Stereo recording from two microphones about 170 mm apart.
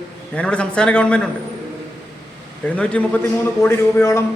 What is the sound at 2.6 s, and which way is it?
Speech, 10° left (ahead or behind).